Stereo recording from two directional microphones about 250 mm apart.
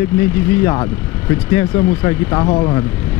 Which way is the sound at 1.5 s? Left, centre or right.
Centre.